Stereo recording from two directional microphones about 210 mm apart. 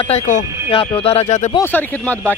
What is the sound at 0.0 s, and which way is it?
Speech, 30° left (ahead or behind).